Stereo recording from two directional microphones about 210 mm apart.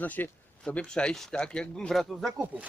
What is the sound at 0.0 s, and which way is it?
Speech, 10° left (ahead or behind).